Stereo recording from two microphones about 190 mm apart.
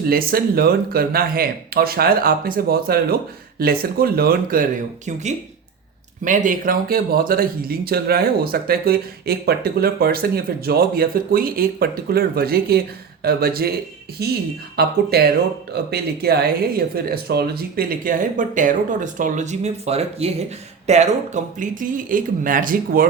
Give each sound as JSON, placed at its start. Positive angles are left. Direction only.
{"t": 0.0, "sound": "a man's voice", "side_deg": -50}